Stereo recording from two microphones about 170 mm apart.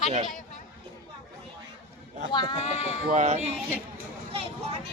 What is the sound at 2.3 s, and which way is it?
Speech, 25° left (ahead or behind).